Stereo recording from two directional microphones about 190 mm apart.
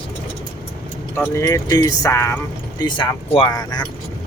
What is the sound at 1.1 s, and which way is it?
Speech, 15° left (ahead or behind).